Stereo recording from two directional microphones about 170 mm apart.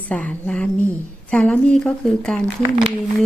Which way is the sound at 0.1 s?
10° left (ahead or behind).